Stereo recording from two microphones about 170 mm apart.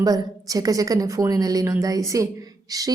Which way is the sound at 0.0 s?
20° right (ahead or behind).